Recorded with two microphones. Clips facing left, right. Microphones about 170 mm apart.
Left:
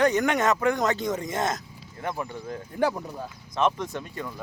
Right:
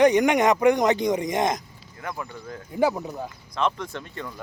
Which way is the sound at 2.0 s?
25° left (ahead or behind).